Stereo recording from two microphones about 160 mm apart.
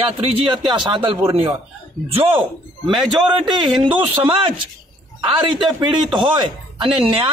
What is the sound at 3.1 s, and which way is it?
A man's voice, 25° right (ahead or behind).